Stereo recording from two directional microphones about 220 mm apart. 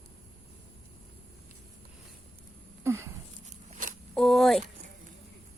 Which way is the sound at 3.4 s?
35° right (ahead or behind).